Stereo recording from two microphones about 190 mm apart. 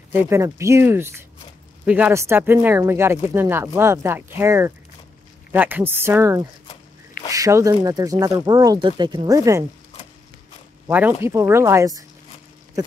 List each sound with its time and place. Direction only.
0.1 s speech: 15° right (ahead or behind)
10.9 s speech: 10° right (ahead or behind)